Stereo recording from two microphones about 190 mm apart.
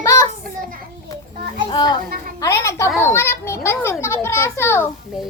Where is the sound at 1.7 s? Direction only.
25° left (ahead or behind).